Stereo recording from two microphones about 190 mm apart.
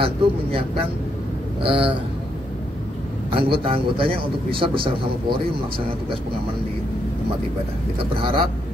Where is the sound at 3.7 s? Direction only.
30° right (ahead or behind).